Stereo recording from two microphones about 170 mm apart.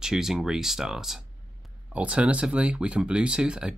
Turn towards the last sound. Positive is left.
turn(degrees=-5)  # may be behind; listen again after turning